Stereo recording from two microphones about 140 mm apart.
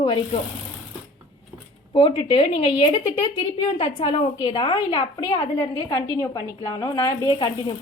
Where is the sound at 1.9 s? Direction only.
40° left (ahead or behind).